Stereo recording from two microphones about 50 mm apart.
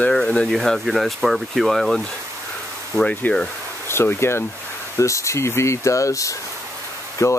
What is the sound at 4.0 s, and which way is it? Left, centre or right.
Speech, left.